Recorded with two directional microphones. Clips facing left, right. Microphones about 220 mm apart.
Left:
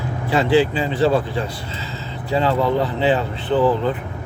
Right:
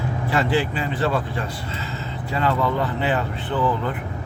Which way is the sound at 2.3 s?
30° left (ahead or behind).